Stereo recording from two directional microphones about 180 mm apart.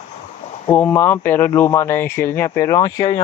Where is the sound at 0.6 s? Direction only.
10° left (ahead or behind).